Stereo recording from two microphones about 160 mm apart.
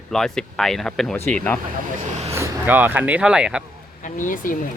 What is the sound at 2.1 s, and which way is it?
Vehicle, 45° right (ahead or behind).